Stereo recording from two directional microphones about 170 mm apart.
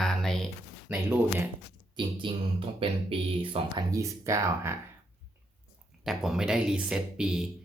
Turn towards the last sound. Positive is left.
turn(degrees=-5)  # may be behind; listen again after turning